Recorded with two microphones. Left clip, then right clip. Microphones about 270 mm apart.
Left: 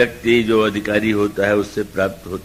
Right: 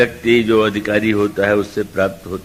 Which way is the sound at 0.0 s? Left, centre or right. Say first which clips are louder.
Right 2 dB; right.